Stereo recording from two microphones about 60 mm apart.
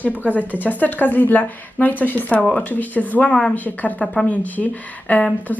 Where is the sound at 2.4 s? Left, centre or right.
Centre.